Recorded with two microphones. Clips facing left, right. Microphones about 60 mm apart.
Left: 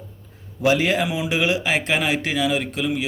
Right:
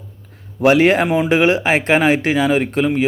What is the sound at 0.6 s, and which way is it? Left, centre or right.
Speech, right.